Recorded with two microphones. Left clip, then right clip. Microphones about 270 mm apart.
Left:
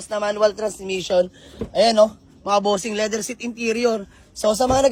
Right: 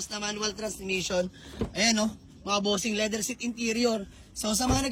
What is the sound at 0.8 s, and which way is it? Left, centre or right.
Speech, centre.